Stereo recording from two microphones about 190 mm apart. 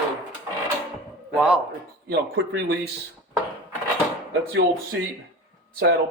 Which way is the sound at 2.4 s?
60° right (ahead or behind).